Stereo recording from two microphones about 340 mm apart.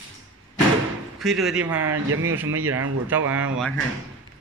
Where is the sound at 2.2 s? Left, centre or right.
Centre.